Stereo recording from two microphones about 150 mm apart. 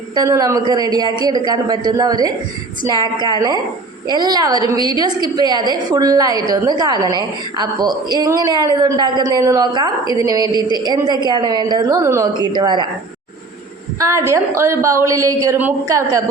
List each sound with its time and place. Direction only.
0.1 s a woman's voice: 25° right (ahead or behind)
14.0 s a woman's voice: 20° right (ahead or behind)